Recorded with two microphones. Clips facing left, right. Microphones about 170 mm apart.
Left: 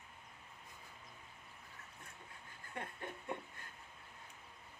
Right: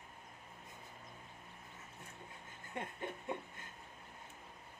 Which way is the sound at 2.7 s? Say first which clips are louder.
Right 3 dB; 20° right (ahead or behind).